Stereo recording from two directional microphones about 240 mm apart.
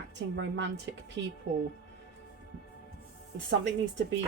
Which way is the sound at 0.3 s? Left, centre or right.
Right.